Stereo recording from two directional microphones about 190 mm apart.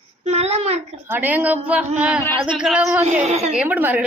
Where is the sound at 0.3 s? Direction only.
35° right (ahead or behind).